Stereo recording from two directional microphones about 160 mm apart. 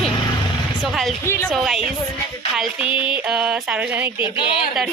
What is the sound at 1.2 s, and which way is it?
Speech, 15° left (ahead or behind).